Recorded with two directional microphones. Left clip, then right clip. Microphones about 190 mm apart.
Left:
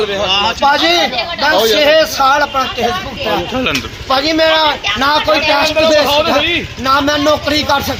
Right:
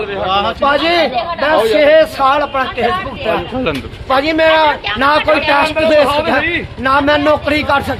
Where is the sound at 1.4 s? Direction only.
Centre (ahead or behind).